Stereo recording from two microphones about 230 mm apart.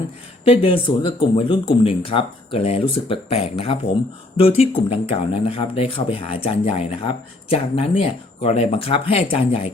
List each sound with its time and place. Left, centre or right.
0.4 s speech: left